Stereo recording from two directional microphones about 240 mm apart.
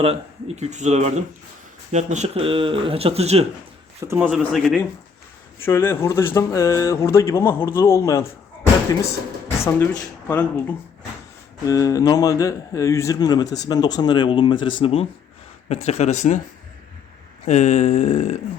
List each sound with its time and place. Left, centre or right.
0.0 s speech: right
4.0 s speech: centre
5.6 s speech: centre
9.6 s speech: centre; by 16.4 s left
17.4 s speech: left